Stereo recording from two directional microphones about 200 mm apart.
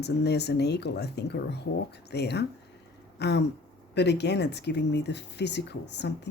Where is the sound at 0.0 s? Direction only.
55° left (ahead or behind).